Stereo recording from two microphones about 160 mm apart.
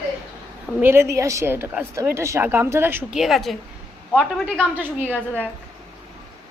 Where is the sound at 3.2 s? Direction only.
Centre (ahead or behind).